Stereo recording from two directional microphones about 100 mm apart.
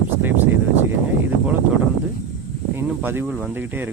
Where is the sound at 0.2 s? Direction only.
20° right (ahead or behind).